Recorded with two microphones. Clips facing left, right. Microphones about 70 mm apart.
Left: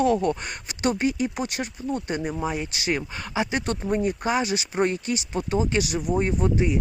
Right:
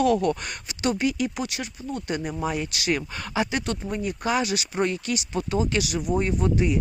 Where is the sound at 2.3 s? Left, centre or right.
Centre.